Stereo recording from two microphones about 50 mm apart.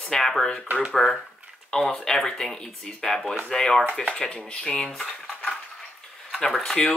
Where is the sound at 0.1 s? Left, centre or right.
Centre.